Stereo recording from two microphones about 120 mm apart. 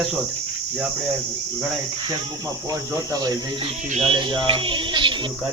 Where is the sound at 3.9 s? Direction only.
55° right (ahead or behind).